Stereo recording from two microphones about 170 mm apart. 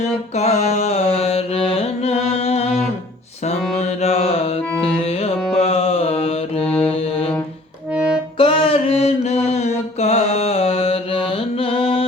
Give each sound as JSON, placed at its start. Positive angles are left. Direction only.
{"t": 0.0, "sound": "carnatic music", "side_deg": 40}
{"t": 3.8, "sound": "music", "side_deg": 40}
{"t": 5.5, "sound": "mantra", "side_deg": 35}
{"t": 6.7, "sound": "mantra", "side_deg": 5}
{"t": 6.9, "sound": "music", "side_deg": 35}
{"t": 7.9, "sound": "accordion", "side_deg": -5}
{"t": 8.4, "sound": "mantra", "side_deg": 30}